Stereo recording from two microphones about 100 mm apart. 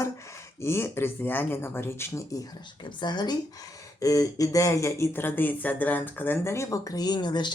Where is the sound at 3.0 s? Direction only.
45° left (ahead or behind).